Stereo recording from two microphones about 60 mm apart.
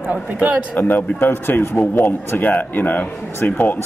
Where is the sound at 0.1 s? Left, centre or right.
Right.